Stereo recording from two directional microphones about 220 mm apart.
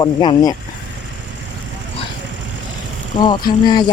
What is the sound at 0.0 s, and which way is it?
Speech, 20° left (ahead or behind).